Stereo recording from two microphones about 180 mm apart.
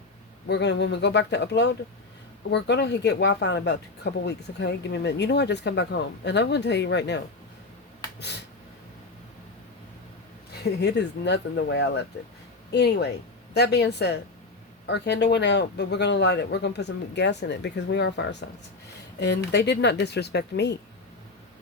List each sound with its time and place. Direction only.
0.4 s speech: 70° left (ahead or behind)
10.6 s speech: 70° left (ahead or behind)
12.7 s a woman's voice: 65° left (ahead or behind)